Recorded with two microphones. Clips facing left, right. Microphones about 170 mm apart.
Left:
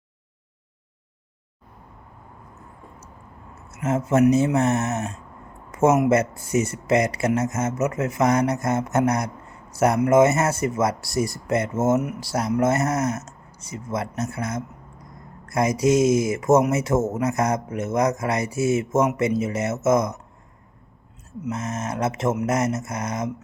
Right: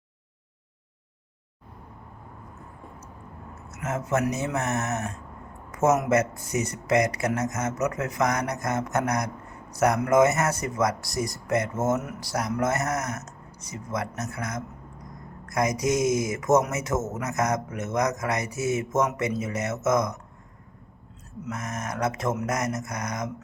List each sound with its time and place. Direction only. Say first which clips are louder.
3.7 s speech: left 5 dB; 30° left (ahead or behind)
5.7 s a sound: left 5 dB; 30° left (ahead or behind)
6.1 s speech: left 3 dB; 30° left (ahead or behind)
21.5 s speech: left 4 dB; 25° left (ahead or behind)